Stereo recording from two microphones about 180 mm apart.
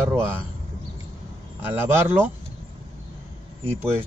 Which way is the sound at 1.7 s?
10° right (ahead or behind).